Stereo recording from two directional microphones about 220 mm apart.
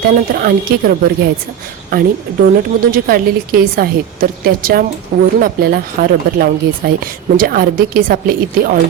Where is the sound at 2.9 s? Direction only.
40° right (ahead or behind).